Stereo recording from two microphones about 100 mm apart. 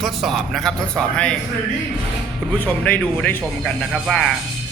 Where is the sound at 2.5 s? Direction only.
15° left (ahead or behind).